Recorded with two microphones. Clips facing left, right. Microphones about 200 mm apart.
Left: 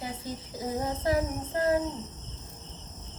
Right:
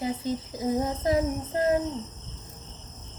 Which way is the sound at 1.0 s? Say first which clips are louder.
Right 3 dB; 20° right (ahead or behind).